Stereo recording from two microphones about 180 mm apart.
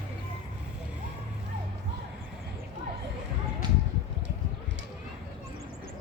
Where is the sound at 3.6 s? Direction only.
25° right (ahead or behind).